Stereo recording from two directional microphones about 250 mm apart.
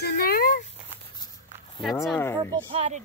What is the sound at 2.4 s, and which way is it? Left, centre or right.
Speech, right.